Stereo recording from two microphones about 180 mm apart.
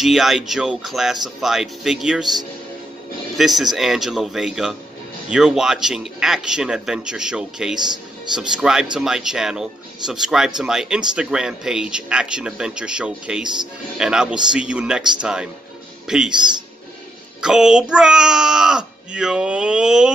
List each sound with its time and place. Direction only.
0.0 s speech: centre (ahead or behind)
3.3 s speech: centre (ahead or behind)
17.4 s speech: 5° right (ahead or behind)